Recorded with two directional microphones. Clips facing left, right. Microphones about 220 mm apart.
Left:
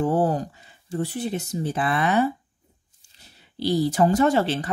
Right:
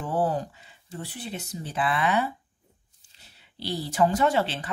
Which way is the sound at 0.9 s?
45° left (ahead or behind).